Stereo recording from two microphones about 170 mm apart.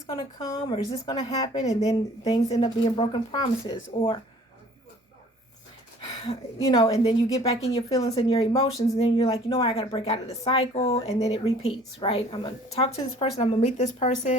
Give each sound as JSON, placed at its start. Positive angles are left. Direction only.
{"t": 0.1, "sound": "a woman's voice", "side_deg": 30}
{"t": 2.5, "sound": "speech", "side_deg": 35}
{"t": 6.0, "sound": "a woman's voice", "side_deg": 35}
{"t": 8.4, "sound": "speech", "side_deg": 35}